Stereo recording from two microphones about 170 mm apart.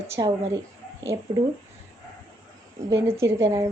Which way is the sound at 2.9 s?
15° right (ahead or behind).